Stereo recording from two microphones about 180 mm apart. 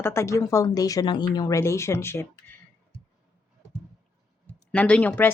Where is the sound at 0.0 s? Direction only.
15° left (ahead or behind).